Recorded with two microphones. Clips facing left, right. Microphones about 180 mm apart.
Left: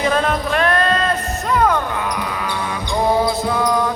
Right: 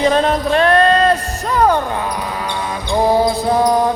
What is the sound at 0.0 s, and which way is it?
Music, 30° right (ahead or behind).